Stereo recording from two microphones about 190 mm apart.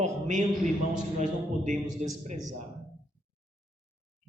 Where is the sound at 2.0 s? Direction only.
35° right (ahead or behind).